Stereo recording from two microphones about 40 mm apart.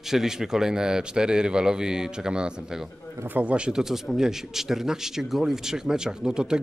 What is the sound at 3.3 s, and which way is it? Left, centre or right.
Speech, right.